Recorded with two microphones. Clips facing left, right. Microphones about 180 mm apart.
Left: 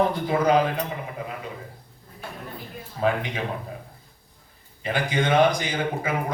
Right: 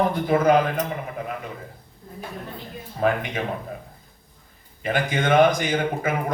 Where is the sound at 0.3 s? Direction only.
50° right (ahead or behind).